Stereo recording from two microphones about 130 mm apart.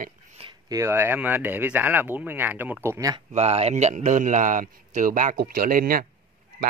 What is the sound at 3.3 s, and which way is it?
Speech, 60° right (ahead or behind).